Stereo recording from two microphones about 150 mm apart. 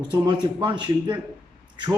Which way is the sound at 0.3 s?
30° right (ahead or behind).